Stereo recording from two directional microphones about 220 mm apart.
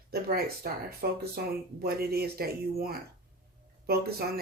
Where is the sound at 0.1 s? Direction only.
45° right (ahead or behind).